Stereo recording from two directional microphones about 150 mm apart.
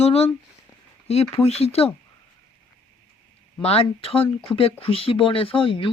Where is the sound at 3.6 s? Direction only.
40° left (ahead or behind).